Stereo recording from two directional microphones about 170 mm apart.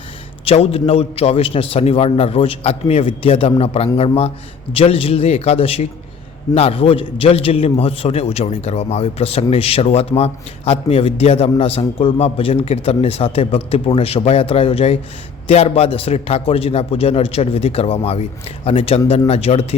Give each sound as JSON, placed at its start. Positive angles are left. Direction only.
{"t": 0.4, "sound": "a man's voice", "side_deg": 35}